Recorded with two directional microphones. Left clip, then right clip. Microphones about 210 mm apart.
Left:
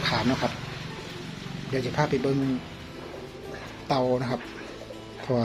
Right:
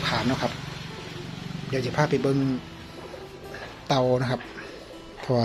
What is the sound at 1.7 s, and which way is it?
Speech, 15° right (ahead or behind).